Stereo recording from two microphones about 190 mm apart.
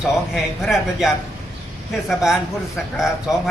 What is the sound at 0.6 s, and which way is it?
A man's voice, centre (ahead or behind).